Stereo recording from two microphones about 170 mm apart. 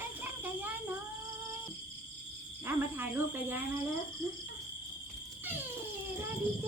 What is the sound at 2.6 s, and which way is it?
Speech, 10° right (ahead or behind).